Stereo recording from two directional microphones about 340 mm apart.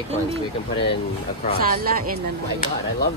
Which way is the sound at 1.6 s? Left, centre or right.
Right.